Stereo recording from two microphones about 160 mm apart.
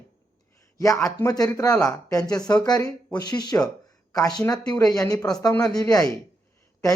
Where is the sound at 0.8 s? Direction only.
20° left (ahead or behind).